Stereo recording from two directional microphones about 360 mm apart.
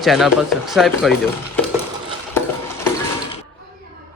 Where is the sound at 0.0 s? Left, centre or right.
Centre.